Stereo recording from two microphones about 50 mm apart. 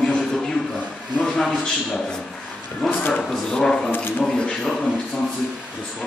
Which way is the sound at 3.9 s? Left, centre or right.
Left.